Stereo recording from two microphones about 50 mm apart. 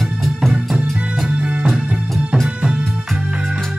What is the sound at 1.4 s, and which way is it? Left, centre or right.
Music, right.